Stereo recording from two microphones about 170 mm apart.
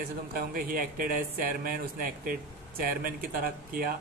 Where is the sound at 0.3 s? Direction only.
60° right (ahead or behind).